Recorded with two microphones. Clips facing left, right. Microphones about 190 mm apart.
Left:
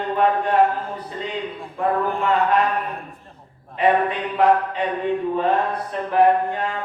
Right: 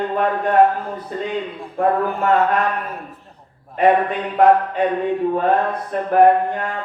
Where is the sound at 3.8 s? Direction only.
45° right (ahead or behind).